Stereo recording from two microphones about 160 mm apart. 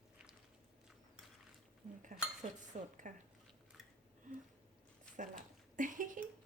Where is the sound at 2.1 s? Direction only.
45° right (ahead or behind).